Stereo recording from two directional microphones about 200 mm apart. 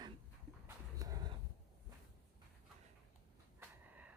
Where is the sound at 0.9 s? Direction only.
20° right (ahead or behind).